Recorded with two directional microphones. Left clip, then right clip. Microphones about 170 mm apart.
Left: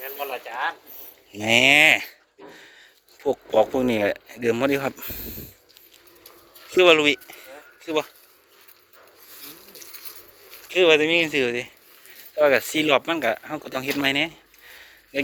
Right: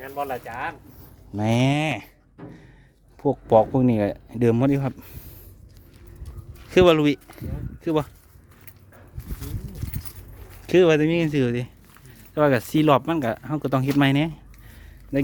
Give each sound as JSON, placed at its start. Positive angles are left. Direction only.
{"t": 0.0, "sound": "speech", "side_deg": -70}
{"t": 1.3, "sound": "speech", "side_deg": -5}
{"t": 6.7, "sound": "speech", "side_deg": -25}
{"t": 10.8, "sound": "speech", "side_deg": -30}